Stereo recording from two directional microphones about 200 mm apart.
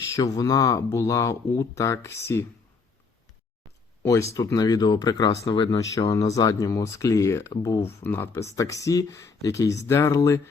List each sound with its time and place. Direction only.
0.2 s speech: 20° left (ahead or behind)
4.0 s speech: 15° left (ahead or behind)